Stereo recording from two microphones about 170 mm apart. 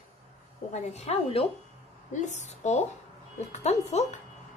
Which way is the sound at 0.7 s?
40° left (ahead or behind).